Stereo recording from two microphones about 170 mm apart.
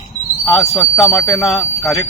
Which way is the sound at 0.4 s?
Centre (ahead or behind).